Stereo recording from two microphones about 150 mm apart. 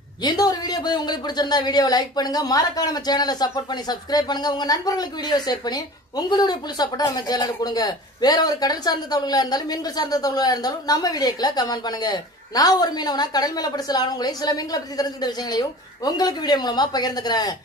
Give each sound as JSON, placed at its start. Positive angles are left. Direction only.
{"t": 0.2, "sound": "speech", "side_deg": 25}